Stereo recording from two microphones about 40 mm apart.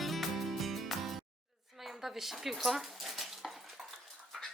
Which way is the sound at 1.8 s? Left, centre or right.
Centre.